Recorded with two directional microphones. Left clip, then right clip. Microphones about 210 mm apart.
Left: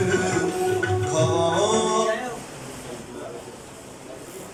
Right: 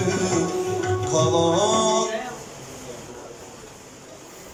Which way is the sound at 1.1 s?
25° right (ahead or behind).